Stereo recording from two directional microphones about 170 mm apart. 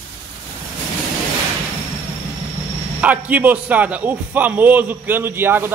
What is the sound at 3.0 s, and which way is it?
A man's voice, 10° right (ahead or behind).